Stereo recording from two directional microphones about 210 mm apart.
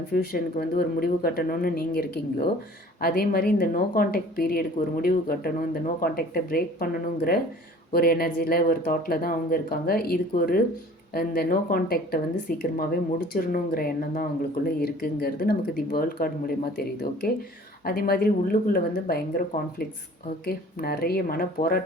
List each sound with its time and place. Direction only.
0.1 s a woman's voice: 45° left (ahead or behind)